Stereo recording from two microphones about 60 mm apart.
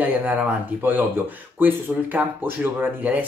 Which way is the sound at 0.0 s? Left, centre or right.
Right.